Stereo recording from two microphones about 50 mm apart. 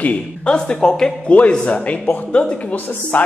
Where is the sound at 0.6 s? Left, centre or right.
Centre.